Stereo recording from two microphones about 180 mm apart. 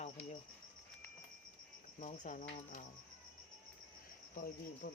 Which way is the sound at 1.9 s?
45° left (ahead or behind).